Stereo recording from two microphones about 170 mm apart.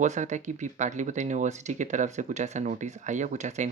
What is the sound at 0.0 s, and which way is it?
Speech, 45° right (ahead or behind).